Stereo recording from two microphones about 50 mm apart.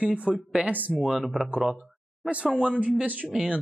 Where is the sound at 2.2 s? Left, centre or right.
Right.